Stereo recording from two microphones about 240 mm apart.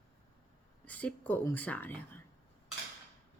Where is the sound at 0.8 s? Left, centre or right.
Centre.